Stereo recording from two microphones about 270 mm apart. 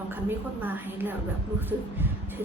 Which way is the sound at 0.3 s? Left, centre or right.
Centre.